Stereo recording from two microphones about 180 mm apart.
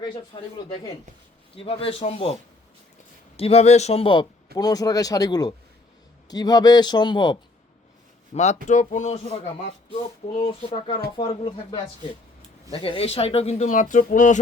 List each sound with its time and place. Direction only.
0.3 s a man's voice: 25° left (ahead or behind)
1.5 s speech: 30° left (ahead or behind)
3.3 s a man's voice: 35° left (ahead or behind)
8.3 s speech: 40° left (ahead or behind)
10.4 s speech: 35° left (ahead or behind)